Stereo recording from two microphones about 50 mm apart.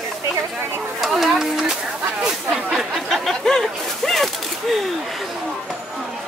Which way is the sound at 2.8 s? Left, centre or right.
Centre.